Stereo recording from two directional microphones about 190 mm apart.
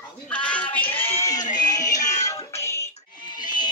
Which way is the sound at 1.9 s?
40° left (ahead or behind).